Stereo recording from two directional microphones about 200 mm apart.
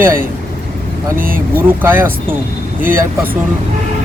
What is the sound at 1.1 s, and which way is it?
Speech, 45° right (ahead or behind).